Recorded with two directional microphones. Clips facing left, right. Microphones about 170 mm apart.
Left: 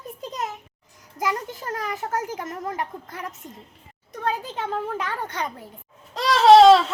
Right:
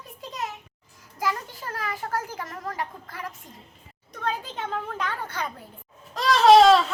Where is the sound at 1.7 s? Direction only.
20° left (ahead or behind).